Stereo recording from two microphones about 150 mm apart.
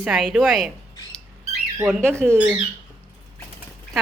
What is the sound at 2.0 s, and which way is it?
Speech, 15° right (ahead or behind).